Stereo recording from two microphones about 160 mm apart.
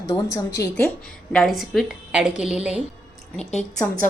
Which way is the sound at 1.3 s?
Centre (ahead or behind).